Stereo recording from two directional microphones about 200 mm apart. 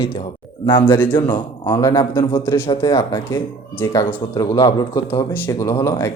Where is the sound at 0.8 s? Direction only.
10° left (ahead or behind).